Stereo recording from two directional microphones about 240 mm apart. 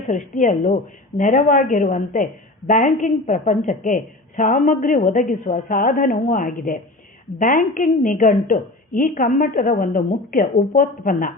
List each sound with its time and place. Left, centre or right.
0.1 s a woman's voice: left